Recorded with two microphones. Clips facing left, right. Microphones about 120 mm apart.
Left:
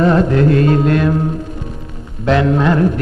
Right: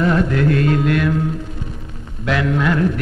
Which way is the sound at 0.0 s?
30° left (ahead or behind).